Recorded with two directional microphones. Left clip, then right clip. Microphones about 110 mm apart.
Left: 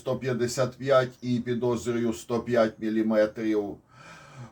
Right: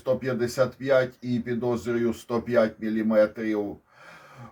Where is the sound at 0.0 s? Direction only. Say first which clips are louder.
Right 3 dB; 40° right (ahead or behind).